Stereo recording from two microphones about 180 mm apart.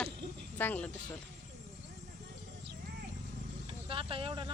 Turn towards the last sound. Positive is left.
turn(degrees=-30)  # may be behind; listen again after turning